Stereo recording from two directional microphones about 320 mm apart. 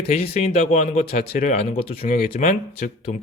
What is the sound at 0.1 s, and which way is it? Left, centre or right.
Speech, centre.